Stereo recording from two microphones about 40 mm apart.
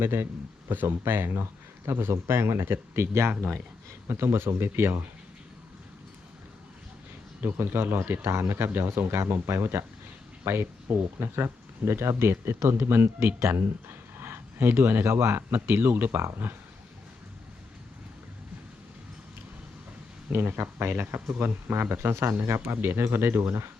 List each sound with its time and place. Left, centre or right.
0.0 s a man's voice: right
0.7 s speech: right
1.9 s speech: right
7.4 s speech: right
11.9 s speech: right
20.3 s speech: right